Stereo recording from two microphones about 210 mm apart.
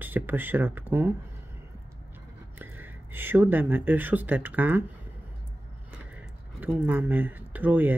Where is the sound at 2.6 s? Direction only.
10° right (ahead or behind).